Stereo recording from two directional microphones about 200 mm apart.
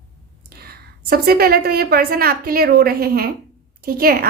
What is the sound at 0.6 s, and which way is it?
A woman's voice, 50° right (ahead or behind).